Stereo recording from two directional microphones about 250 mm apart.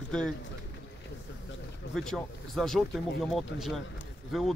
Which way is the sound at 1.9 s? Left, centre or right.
Centre.